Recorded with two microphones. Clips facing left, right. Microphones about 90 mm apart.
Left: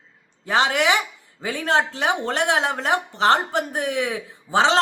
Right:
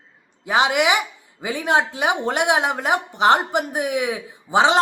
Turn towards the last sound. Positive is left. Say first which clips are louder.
# right 2 dB
turn(degrees=-15)  # may be behind; listen again after turning